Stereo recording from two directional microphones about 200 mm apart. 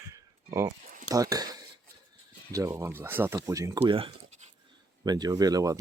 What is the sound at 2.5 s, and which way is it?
Speech, 15° right (ahead or behind).